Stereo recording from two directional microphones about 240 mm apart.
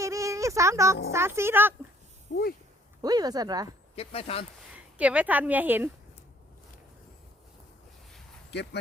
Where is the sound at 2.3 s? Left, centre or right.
Left.